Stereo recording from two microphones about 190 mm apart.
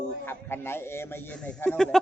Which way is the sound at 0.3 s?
10° left (ahead or behind).